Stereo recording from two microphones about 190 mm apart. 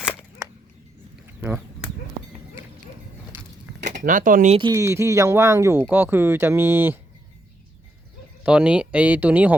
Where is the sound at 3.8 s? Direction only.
40° right (ahead or behind).